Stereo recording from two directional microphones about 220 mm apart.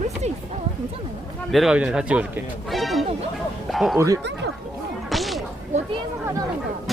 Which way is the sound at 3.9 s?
15° right (ahead or behind).